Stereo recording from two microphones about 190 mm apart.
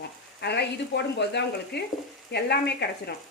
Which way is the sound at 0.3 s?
60° left (ahead or behind).